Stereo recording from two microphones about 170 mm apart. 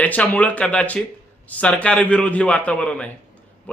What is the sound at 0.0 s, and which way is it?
Speech, 10° left (ahead or behind).